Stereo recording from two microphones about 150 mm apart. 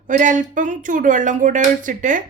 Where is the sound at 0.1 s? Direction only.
60° right (ahead or behind).